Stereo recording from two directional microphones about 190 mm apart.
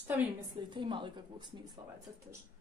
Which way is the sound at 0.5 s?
25° right (ahead or behind).